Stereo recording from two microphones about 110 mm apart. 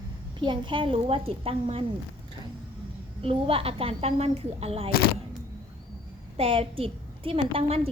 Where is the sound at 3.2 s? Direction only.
60° right (ahead or behind).